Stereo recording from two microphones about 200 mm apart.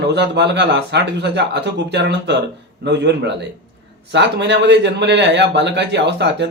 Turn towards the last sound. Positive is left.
turn(degrees=-60)  # may be behind; listen again after turning